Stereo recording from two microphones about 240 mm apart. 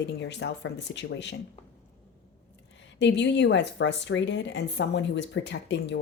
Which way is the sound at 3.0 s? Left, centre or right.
Left.